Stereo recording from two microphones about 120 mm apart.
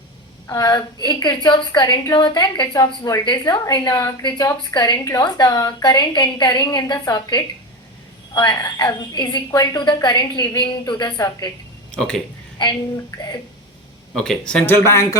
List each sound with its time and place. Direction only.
0.4 s a woman's voice: 30° left (ahead or behind)
11.9 s speech: 5° left (ahead or behind)
14.1 s speech: 5° left (ahead or behind)